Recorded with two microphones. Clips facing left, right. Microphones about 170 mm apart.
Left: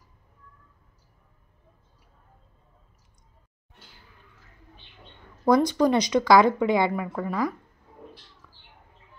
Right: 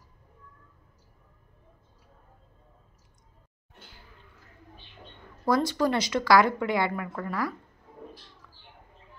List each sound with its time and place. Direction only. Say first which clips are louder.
5.4 s speech: left 5 dB; 20° left (ahead or behind)